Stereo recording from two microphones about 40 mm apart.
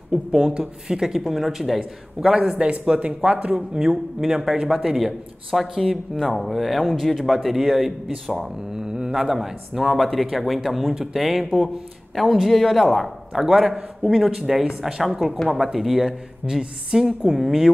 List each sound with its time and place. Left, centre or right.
0.1 s a man's voice: centre
8.7 s a man's voice: centre
13.3 s speech: centre
15.0 s a man's voice: centre